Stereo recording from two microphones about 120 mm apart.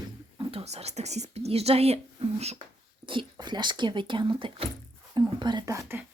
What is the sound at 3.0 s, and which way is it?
Speech, 45° right (ahead or behind).